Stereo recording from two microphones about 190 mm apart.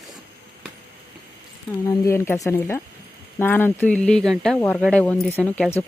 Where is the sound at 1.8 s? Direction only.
15° left (ahead or behind).